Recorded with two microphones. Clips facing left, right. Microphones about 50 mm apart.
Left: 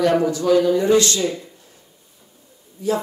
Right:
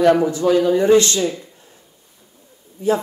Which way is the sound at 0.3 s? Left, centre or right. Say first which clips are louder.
Right 1 dB; right.